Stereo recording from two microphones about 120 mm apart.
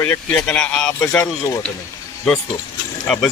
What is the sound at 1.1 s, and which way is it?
Speech, 20° left (ahead or behind).